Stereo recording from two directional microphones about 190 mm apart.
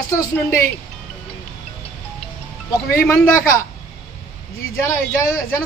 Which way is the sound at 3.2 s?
10° left (ahead or behind).